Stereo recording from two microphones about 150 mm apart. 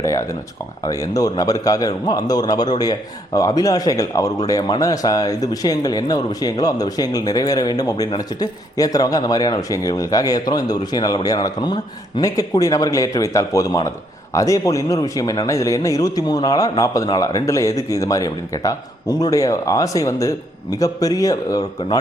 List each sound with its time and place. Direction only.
0.0 s a man's voice: 20° left (ahead or behind)